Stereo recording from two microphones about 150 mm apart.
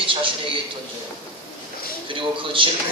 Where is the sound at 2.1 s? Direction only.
35° right (ahead or behind).